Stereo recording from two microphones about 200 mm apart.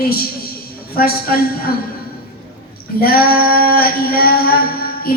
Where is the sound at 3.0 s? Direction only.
50° left (ahead or behind).